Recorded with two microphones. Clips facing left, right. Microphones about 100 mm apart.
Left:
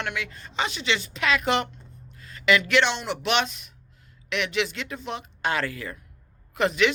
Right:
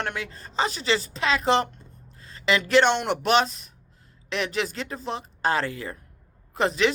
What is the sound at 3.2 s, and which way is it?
Speech, 35° right (ahead or behind).